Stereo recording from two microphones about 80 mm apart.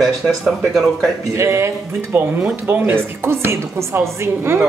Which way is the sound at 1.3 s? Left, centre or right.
Right.